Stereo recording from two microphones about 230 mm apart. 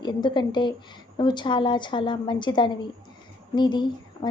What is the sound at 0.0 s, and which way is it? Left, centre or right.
A woman's voice, centre.